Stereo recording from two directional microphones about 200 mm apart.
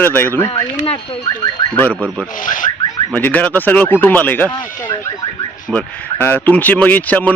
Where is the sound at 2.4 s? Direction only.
40° left (ahead or behind).